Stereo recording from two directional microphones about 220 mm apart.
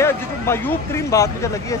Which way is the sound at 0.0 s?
10° left (ahead or behind).